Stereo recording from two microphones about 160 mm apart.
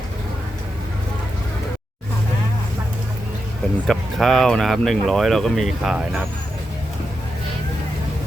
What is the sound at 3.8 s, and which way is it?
Speech, centre (ahead or behind).